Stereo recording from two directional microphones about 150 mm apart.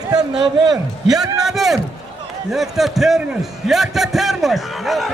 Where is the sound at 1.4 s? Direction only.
Centre (ahead or behind).